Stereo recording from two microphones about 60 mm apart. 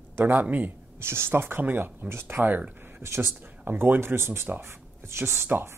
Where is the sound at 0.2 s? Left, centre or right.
Right.